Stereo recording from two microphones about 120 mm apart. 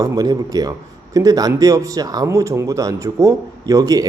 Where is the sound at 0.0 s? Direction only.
30° right (ahead or behind).